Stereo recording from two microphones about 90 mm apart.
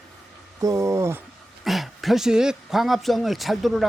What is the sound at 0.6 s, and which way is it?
Speech, 35° right (ahead or behind).